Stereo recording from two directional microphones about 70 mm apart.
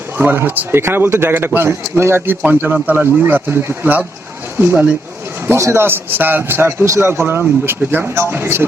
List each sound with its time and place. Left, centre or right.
0.2 s a man's voice: right